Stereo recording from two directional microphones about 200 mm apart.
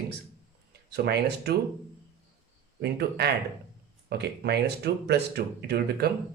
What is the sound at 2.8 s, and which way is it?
Speech, 55° right (ahead or behind).